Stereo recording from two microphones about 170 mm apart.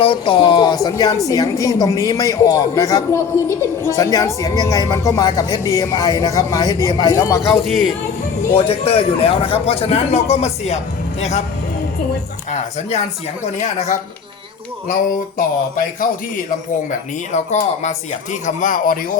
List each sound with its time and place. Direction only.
0.0 s speech: 30° left (ahead or behind)
8.5 s a man's voice: 35° left (ahead or behind)
12.5 s speech: 40° left (ahead or behind)
17.3 s speech: 45° left (ahead or behind)